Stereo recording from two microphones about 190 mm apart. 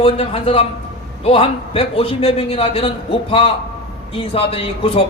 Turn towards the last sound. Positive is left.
turn(degrees=30)  # may be behind; listen again after turning